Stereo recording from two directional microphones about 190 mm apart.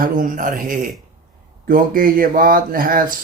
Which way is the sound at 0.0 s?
45° right (ahead or behind).